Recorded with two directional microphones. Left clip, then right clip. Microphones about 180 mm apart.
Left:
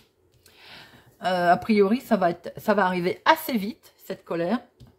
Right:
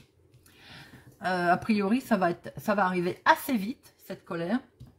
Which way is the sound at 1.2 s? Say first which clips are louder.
Left 5 dB; 15° left (ahead or behind).